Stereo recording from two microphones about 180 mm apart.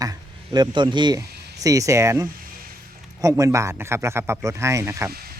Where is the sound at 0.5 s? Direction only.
25° right (ahead or behind).